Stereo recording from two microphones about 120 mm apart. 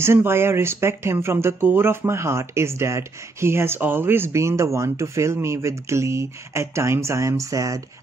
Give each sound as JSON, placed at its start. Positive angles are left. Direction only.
{"t": 0.0, "sound": "speech", "side_deg": -20}